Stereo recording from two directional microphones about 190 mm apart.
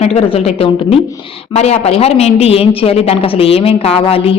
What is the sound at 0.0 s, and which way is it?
A woman's voice, 35° left (ahead or behind).